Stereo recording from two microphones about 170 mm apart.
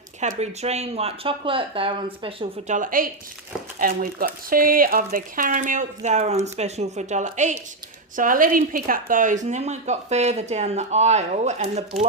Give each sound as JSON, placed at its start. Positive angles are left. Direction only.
{"t": 0.2, "sound": "speech", "side_deg": -40}